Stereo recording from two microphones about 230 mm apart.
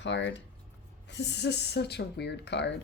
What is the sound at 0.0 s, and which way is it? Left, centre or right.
Speech, left.